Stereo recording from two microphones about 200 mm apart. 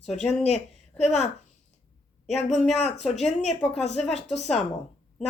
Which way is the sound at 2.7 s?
35° left (ahead or behind).